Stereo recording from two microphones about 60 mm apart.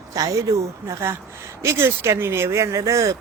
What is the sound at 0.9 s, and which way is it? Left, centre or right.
Speech, right.